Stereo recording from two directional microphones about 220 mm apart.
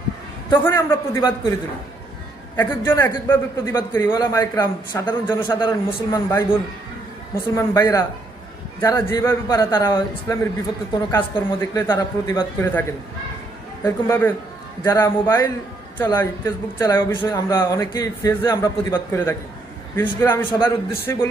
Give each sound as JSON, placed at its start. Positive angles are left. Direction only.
{"t": 0.5, "sound": "speech", "side_deg": 10}
{"t": 2.6, "sound": "speech", "side_deg": 10}
{"t": 13.8, "sound": "speech", "side_deg": 10}
{"t": 20.5, "sound": "a man's voice", "side_deg": 20}
{"t": 20.9, "sound": "speech", "side_deg": 10}